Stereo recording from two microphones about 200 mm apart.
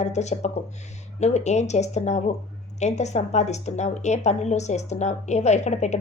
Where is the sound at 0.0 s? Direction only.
35° left (ahead or behind).